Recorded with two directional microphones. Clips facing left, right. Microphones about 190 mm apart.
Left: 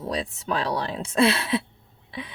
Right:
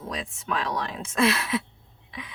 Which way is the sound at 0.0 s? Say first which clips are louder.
Left 5 dB; 35° left (ahead or behind).